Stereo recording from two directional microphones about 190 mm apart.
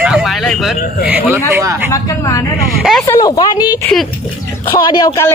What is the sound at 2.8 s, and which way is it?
Speech, centre (ahead or behind).